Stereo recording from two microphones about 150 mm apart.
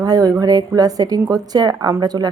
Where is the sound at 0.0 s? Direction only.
25° right (ahead or behind).